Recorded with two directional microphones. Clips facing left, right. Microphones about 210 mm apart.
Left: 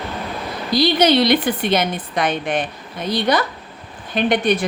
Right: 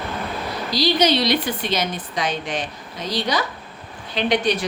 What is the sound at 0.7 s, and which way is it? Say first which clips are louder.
A woman's voice: left 4 dB; 55° left (ahead or behind).